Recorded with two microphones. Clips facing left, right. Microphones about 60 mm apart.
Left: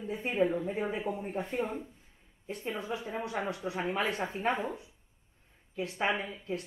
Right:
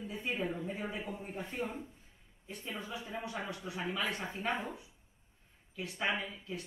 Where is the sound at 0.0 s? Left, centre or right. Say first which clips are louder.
Left 7 dB; left.